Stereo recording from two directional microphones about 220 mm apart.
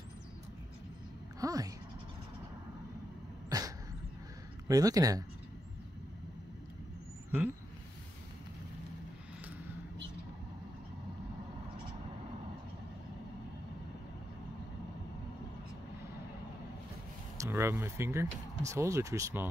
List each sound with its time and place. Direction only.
1.4 s speech: 15° right (ahead or behind)
3.4 s dog: 15° right (ahead or behind)
4.6 s speech: 15° right (ahead or behind)
17.4 s a sound: 10° right (ahead or behind)
18.6 s speech: 15° right (ahead or behind)